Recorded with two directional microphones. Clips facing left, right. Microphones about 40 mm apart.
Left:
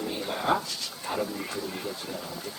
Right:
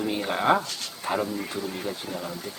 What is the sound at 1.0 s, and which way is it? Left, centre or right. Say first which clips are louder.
Speech: right 4 dB; right.